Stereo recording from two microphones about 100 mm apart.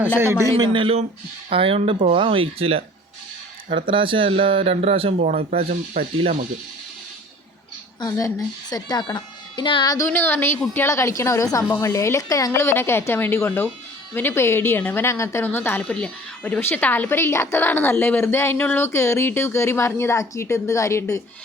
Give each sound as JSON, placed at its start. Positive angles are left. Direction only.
{"t": 0.6, "sound": "speech", "side_deg": -60}
{"t": 3.7, "sound": "speech", "side_deg": -55}
{"t": 8.1, "sound": "a woman's voice", "side_deg": 35}
{"t": 10.1, "sound": "a woman's voice", "side_deg": 20}
{"t": 18.9, "sound": "a woman's voice", "side_deg": 30}